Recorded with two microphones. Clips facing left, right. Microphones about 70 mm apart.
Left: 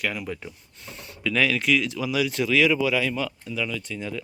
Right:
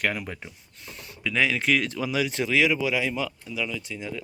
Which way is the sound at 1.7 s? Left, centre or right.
Right.